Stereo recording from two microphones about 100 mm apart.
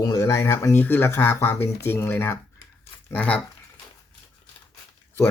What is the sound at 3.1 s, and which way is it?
Speech, 15° left (ahead or behind).